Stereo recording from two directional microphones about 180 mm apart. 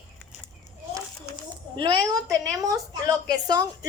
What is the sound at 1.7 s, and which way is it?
A woman's voice, 25° right (ahead or behind).